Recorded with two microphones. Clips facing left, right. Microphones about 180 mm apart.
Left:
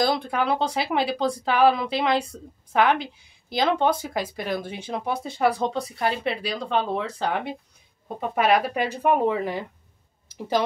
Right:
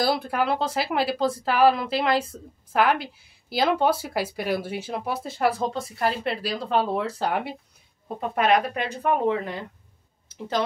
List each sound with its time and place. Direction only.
0.0 s speech: 5° right (ahead or behind); by 9.7 s 10° left (ahead or behind)